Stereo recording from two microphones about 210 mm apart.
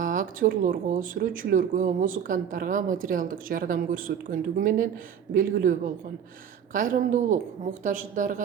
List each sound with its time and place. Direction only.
0.0 s speech: 40° right (ahead or behind)